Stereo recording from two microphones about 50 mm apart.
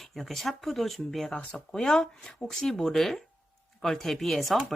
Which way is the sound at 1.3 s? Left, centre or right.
Centre.